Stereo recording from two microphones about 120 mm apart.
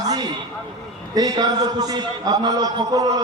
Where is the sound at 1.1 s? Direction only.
30° right (ahead or behind).